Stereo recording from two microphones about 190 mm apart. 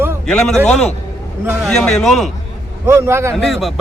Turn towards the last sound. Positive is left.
turn(degrees=0)  # may be behind; listen again after turning